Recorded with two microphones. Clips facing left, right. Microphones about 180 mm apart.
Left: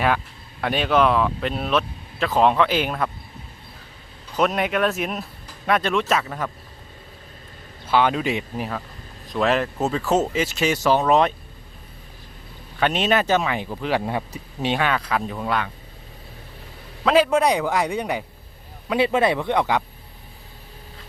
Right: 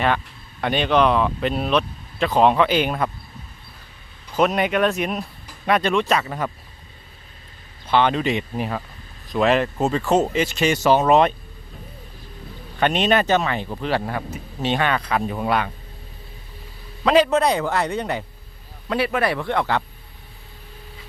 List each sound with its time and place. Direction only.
0.6 s speech: 5° left (ahead or behind)
4.4 s speech: centre (ahead or behind)
7.9 s speech: 5° left (ahead or behind)
12.8 s speech: centre (ahead or behind)
15.4 s speech: 10° right (ahead or behind)
17.0 s speech: centre (ahead or behind)
18.9 s speech: 20° left (ahead or behind)